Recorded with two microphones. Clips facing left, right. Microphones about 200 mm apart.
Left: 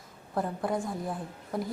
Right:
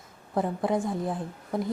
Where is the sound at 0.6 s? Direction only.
20° right (ahead or behind).